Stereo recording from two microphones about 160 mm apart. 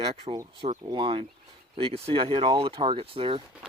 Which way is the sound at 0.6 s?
45° right (ahead or behind).